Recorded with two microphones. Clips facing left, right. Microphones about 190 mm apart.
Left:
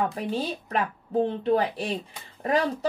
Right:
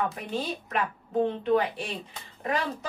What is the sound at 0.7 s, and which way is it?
A woman's voice, 35° left (ahead or behind).